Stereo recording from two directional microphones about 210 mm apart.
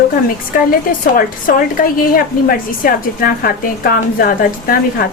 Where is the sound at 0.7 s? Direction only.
40° left (ahead or behind).